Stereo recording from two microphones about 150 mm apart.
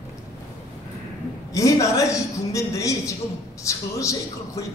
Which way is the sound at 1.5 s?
20° left (ahead or behind).